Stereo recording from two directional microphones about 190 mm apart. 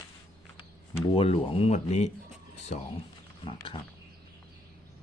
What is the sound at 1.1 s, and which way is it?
Speech, 30° left (ahead or behind).